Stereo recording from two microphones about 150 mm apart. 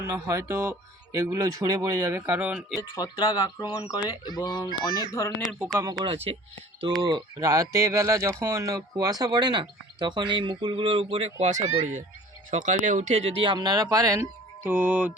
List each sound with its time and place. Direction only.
0.1 s speech: 20° right (ahead or behind)
2.9 s speech: 30° left (ahead or behind)
5.7 s speech: 25° right (ahead or behind)
6.3 s speech: 40° right (ahead or behind); by 15.1 s 10° right (ahead or behind)